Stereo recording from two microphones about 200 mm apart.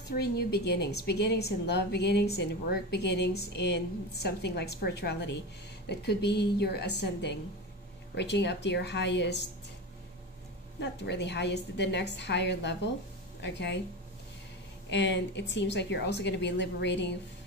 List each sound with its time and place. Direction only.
0.2 s a woman's voice: 55° left (ahead or behind)
10.8 s a woman's voice: 60° left (ahead or behind)
14.9 s a woman's voice: 60° left (ahead or behind)